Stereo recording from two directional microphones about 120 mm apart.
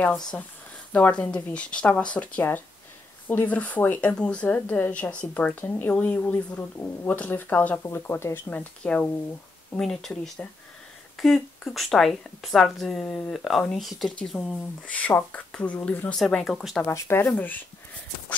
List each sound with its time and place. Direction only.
0.9 s speech: 10° left (ahead or behind)
15.0 s speech: 15° left (ahead or behind)
16.8 s speech: 20° left (ahead or behind)